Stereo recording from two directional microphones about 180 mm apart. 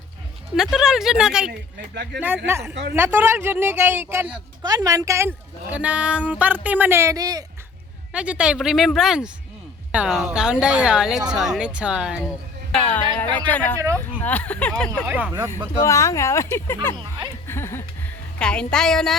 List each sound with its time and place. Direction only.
0.5 s a woman's voice: 5° right (ahead or behind); by 7.4 s 20° right (ahead or behind)
8.1 s speech: 5° right (ahead or behind)
12.7 s speech: 10° left (ahead or behind)
15.0 s speech: 10° right (ahead or behind)
15.8 s speech: 15° left (ahead or behind)
17.4 s a sound: 15° left (ahead or behind)
18.3 s speech: 5° left (ahead or behind)